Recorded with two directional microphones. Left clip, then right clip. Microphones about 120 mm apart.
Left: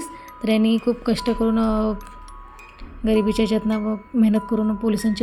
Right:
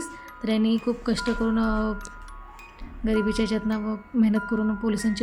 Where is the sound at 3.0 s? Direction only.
30° left (ahead or behind).